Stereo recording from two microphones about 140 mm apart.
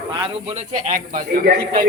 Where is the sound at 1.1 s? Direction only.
90° right.